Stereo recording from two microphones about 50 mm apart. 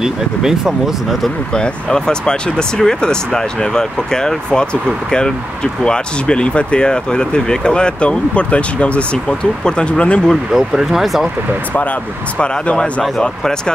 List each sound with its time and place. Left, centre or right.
0.0 s speech: centre
1.5 s speech: centre
10.5 s speech: centre
12.4 s speech: left